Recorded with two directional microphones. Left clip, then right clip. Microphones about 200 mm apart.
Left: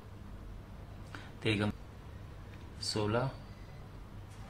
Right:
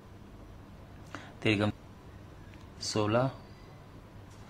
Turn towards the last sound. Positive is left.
turn(degrees=-30)  # may be behind; listen again after turning